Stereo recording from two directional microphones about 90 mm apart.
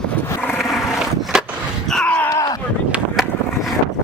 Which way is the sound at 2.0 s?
15° left (ahead or behind).